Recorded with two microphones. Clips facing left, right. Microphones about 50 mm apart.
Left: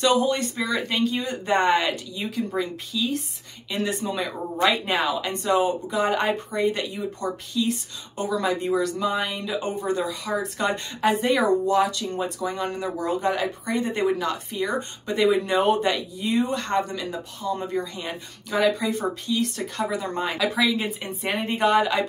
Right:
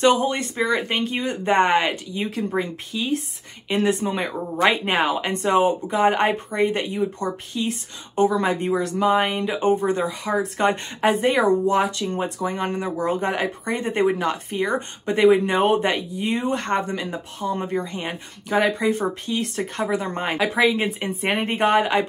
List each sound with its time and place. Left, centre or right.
0.0 s speech: right